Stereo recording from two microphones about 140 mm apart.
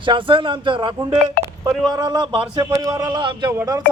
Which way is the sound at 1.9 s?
30° right (ahead or behind).